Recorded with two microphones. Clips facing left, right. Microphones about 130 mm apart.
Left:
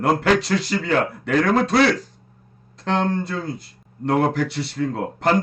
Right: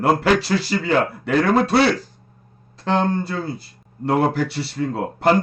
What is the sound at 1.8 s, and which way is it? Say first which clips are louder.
Speech: even; 30° right (ahead or behind).